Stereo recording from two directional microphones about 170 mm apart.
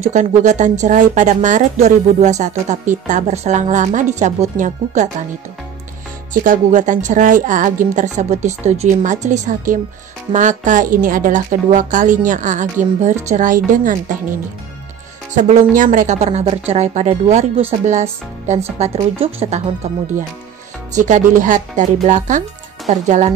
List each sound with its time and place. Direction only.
0.0 s speech: 45° right (ahead or behind)
6.3 s speech: 50° right (ahead or behind); by 19.7 s 35° right (ahead or behind)
20.9 s speech: 45° right (ahead or behind)